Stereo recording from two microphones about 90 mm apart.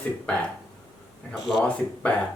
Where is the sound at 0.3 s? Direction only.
10° left (ahead or behind).